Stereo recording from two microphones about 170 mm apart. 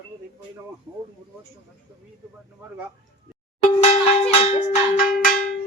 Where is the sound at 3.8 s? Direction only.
40° left (ahead or behind).